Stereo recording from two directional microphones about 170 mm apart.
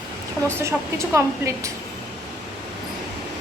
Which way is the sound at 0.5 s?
15° right (ahead or behind).